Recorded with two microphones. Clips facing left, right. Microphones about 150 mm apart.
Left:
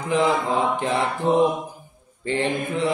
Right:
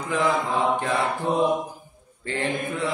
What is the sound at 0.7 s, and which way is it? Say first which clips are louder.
Mantra: left 1 dB; 20° left (ahead or behind).